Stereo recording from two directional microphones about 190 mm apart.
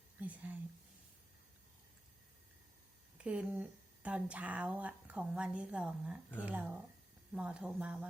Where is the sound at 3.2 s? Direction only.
5° right (ahead or behind).